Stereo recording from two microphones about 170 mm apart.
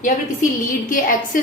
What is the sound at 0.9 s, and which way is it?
Speech, 55° left (ahead or behind).